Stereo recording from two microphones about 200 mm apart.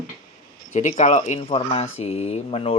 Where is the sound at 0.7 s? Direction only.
35° left (ahead or behind).